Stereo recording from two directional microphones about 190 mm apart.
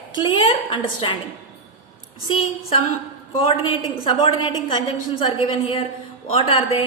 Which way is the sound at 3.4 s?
30° left (ahead or behind).